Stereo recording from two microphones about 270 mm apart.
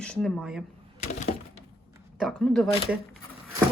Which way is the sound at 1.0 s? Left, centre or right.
Left.